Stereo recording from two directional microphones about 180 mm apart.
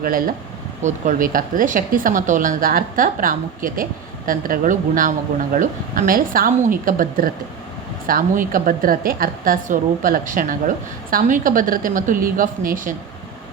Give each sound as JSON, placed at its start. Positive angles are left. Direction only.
{"t": 0.0, "sound": "speech", "side_deg": -50}